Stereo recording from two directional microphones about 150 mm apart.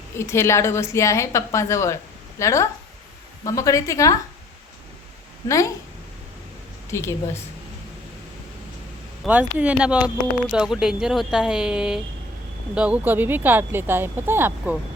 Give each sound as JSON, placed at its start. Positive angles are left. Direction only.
{"t": 0.2, "sound": "a woman's voice", "side_deg": 15}
{"t": 5.5, "sound": "a woman's voice", "side_deg": 20}
{"t": 6.9, "sound": "a woman's voice", "side_deg": 20}
{"t": 9.2, "sound": "speech", "side_deg": -10}